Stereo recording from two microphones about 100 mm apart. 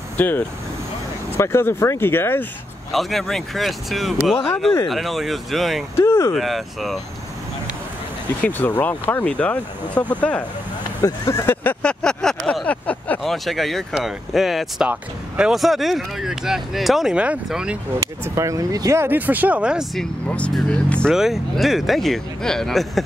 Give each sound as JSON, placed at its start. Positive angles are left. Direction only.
{"t": 0.2, "sound": "speech", "side_deg": 20}
{"t": 2.9, "sound": "speech", "side_deg": 0}
{"t": 5.9, "sound": "speech", "side_deg": 25}
{"t": 6.3, "sound": "speech", "side_deg": 0}
{"t": 8.5, "sound": "speech", "side_deg": 20}
{"t": 11.0, "sound": "speech", "side_deg": 35}
{"t": 11.6, "sound": "vehicle", "side_deg": 10}
{"t": 13.2, "sound": "speech", "side_deg": 0}
{"t": 18.2, "sound": "speech", "side_deg": -30}
{"t": 19.0, "sound": "speech", "side_deg": -15}
{"t": 20.2, "sound": "speech", "side_deg": 10}
{"t": 21.1, "sound": "speech", "side_deg": -5}